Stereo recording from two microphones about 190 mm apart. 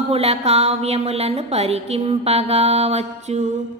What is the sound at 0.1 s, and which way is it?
A woman's voice, 30° right (ahead or behind).